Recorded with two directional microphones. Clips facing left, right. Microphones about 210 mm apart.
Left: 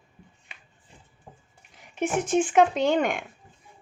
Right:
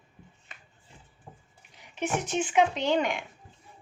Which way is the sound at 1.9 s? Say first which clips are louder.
Left 5 dB; 50° left (ahead or behind).